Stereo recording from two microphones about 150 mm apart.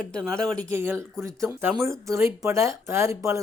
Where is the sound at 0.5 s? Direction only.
15° right (ahead or behind).